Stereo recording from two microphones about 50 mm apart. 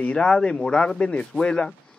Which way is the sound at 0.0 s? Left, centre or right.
Centre.